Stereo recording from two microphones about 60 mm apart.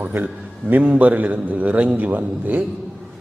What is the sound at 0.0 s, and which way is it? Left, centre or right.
A man's voice, right.